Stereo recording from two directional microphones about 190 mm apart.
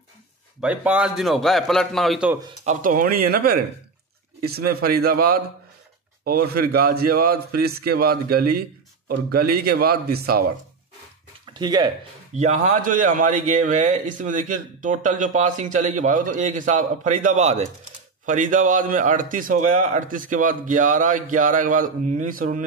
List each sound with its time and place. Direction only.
0.6 s a man's voice: 5° right (ahead or behind)
2.6 s a man's voice: 45° right (ahead or behind)
11.5 s speech: 20° right (ahead or behind)
12.4 s a man's voice: 40° right (ahead or behind)